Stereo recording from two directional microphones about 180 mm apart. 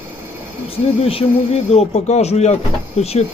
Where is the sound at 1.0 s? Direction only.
35° left (ahead or behind).